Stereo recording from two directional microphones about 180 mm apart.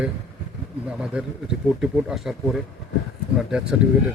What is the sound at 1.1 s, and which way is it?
Speech, 5° right (ahead or behind).